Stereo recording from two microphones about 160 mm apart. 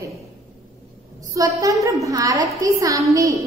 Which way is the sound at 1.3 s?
20° right (ahead or behind).